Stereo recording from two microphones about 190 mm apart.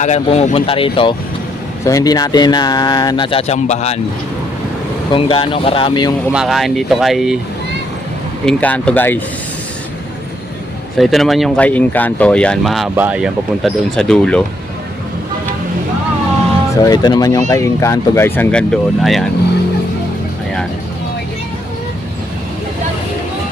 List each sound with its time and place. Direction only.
0.0 s speech: 35° left (ahead or behind)
5.1 s speech: 25° left (ahead or behind)
6.3 s speech: centre (ahead or behind)
8.4 s speech: 5° left (ahead or behind)
10.9 s speech: centre (ahead or behind)
16.8 s speech: 20° left (ahead or behind); by 19.2 s centre (ahead or behind)